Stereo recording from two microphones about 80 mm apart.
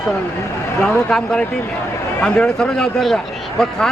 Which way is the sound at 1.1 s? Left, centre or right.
Centre.